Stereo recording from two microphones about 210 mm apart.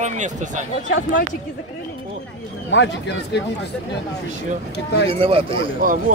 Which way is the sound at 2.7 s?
55° left (ahead or behind).